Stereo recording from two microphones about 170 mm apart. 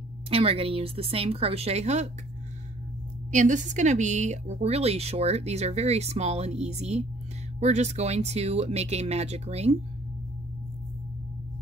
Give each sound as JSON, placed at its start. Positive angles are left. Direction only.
{"t": 0.3, "sound": "a woman's voice", "side_deg": -35}
{"t": 3.3, "sound": "a woman's voice", "side_deg": -45}